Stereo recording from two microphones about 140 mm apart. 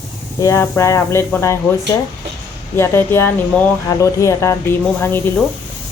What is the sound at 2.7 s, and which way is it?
Speech, 15° left (ahead or behind).